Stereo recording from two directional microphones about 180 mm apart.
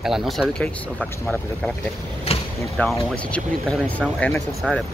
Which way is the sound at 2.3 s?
35° left (ahead or behind).